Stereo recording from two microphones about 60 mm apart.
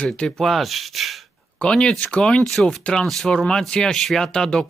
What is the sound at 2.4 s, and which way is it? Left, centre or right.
Speech, centre.